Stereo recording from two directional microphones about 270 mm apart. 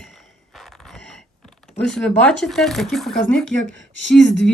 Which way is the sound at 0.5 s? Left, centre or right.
Centre.